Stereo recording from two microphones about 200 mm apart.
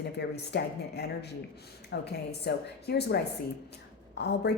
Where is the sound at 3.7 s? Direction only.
55° left (ahead or behind).